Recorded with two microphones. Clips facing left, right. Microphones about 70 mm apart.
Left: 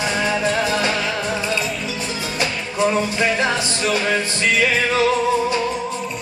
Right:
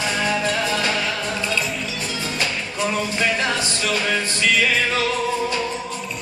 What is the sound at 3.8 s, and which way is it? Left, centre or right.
Music, centre.